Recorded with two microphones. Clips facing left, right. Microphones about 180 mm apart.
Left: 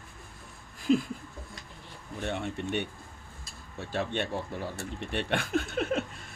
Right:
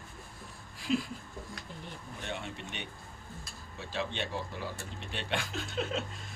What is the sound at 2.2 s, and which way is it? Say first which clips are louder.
Speech: left 8 dB; 55° left (ahead or behind).